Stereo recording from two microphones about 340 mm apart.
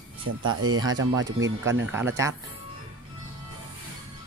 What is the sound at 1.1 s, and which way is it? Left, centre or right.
Speech, centre.